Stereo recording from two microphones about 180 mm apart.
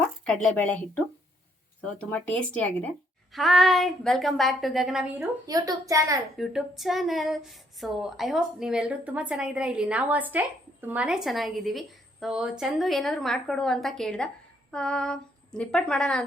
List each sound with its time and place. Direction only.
0.3 s a woman's voice: 5° left (ahead or behind)
5.5 s a woman's voice: 20° right (ahead or behind)
6.3 s a woman's voice: centre (ahead or behind)